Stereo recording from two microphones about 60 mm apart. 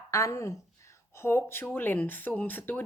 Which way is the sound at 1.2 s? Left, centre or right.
Left.